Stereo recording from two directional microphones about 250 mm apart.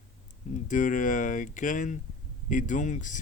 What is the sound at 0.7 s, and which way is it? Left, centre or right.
Speech, left.